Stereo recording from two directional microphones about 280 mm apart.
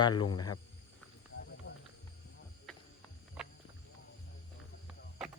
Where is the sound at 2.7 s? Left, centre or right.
Centre.